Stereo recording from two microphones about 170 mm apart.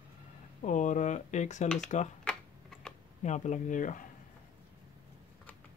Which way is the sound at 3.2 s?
45° left (ahead or behind).